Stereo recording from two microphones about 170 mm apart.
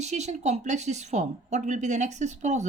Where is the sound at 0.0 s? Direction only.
40° right (ahead or behind).